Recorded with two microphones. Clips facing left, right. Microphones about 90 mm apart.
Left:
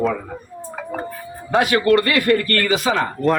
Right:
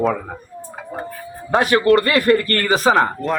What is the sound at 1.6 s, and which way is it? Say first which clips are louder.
Speech: right 2 dB; 40° right (ahead or behind).